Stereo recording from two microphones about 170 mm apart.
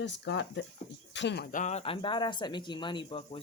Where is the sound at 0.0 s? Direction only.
90° left.